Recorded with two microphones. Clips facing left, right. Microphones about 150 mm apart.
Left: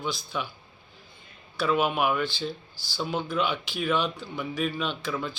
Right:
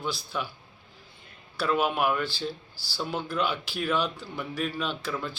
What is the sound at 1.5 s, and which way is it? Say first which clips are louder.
A man's voice: left 1 dB; centre (ahead or behind).